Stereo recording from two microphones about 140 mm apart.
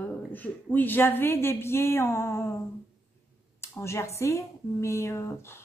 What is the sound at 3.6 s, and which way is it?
A woman's voice, 20° left (ahead or behind).